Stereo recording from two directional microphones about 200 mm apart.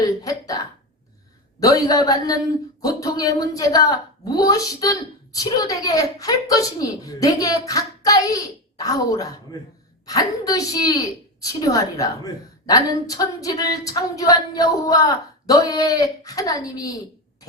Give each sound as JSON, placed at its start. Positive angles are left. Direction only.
{"t": 0.0, "sound": "hiccup", "side_deg": 15}
{"t": 1.5, "sound": "a woman's voice", "side_deg": 15}